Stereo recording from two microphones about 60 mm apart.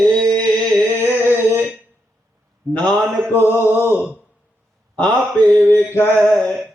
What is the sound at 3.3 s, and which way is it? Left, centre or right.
Speech, left.